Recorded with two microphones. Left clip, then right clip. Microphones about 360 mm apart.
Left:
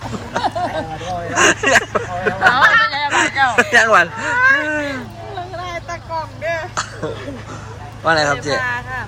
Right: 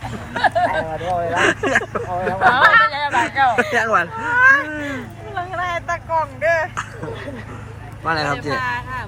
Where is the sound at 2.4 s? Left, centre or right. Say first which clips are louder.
Even; right.